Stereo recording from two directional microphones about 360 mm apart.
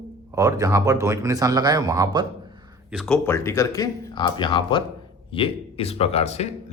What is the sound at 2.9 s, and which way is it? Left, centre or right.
Speech, centre.